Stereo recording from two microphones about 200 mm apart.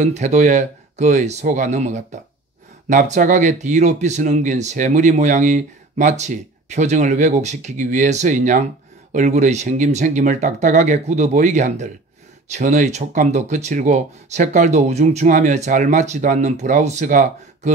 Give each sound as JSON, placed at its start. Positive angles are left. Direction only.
{"t": 0.0, "sound": "speech", "side_deg": -35}